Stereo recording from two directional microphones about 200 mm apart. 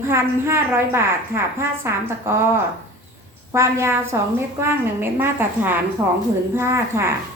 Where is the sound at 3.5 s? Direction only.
15° right (ahead or behind).